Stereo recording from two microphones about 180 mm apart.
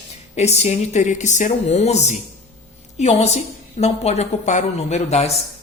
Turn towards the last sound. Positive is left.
turn(degrees=35)  # may be behind; listen again after turning